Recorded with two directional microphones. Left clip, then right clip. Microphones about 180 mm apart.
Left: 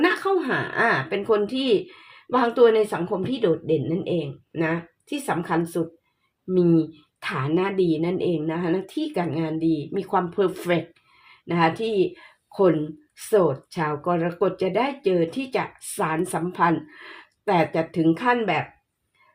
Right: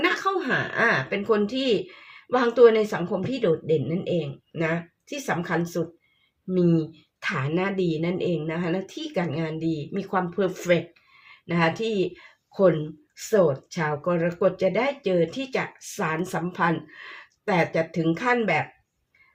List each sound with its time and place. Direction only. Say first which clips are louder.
0.0 s speech: left 2 dB; 25° left (ahead or behind)